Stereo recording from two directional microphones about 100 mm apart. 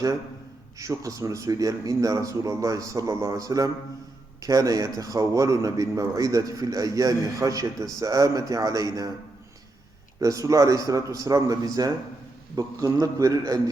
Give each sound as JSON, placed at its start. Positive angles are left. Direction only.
{"t": 0.8, "sound": "a man's voice", "side_deg": -35}
{"t": 10.2, "sound": "a man's voice", "side_deg": -35}